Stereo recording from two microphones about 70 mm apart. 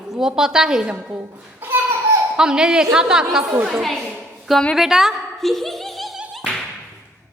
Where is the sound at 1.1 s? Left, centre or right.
Right.